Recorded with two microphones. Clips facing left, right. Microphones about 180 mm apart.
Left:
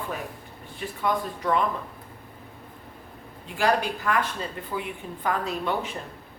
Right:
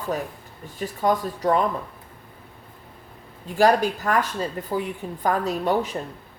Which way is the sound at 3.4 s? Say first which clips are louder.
Right 6 dB; 40° right (ahead or behind).